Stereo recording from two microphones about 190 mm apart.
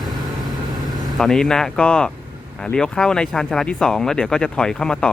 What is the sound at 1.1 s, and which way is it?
Speech, centre (ahead or behind).